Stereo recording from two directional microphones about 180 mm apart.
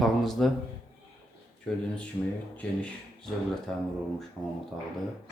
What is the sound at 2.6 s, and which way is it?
Speech, 5° left (ahead or behind).